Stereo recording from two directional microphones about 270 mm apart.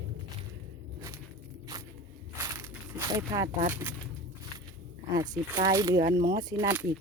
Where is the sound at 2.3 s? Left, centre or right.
Centre.